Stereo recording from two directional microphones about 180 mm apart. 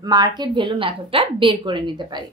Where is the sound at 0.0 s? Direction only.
20° right (ahead or behind).